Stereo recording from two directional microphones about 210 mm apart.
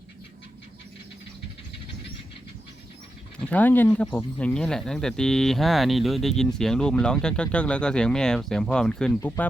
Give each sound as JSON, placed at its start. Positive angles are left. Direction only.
{"t": 3.4, "sound": "speech", "side_deg": 5}